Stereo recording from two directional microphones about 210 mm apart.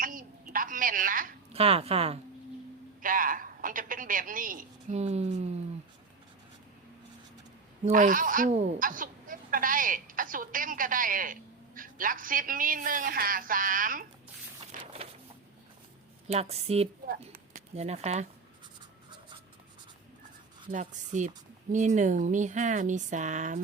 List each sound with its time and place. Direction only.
0.0 s a sound: 40° right (ahead or behind)
3.0 s a woman's voice: 40° right (ahead or behind)
7.9 s speech: 40° right (ahead or behind)
14.8 s a sound: 30° right (ahead or behind)
16.3 s a woman's voice: 30° right (ahead or behind)
20.7 s speech: 35° right (ahead or behind)